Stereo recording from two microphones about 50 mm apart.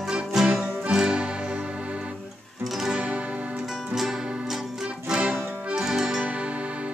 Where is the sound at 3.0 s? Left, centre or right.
Right.